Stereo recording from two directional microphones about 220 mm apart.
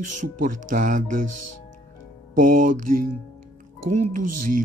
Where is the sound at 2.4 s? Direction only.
35° right (ahead or behind).